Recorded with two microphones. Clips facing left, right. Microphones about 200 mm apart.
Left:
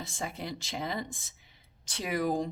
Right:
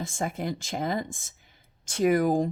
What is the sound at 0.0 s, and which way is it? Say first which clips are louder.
Speech: right 7 dB; 50° right (ahead or behind).